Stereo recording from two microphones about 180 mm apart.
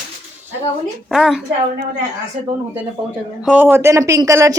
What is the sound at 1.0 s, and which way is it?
Speech, centre (ahead or behind).